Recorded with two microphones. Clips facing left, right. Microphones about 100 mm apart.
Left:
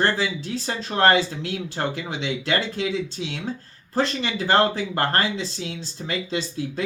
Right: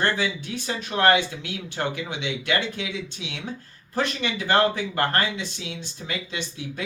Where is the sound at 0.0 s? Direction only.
35° left (ahead or behind).